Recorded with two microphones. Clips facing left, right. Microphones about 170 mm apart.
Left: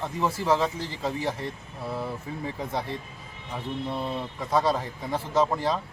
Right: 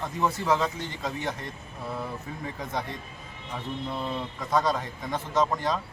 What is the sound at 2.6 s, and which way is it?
A man's voice, 5° left (ahead or behind).